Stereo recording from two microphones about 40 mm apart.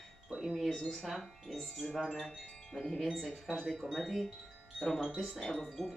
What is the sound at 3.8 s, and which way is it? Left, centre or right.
Speech, centre.